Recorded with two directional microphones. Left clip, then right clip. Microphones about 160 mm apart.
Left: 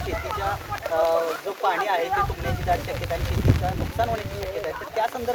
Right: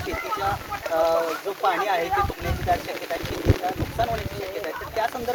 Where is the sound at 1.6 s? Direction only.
15° left (ahead or behind).